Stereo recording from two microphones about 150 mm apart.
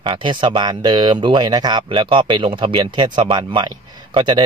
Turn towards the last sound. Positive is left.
turn(degrees=-30)  # may be behind; listen again after turning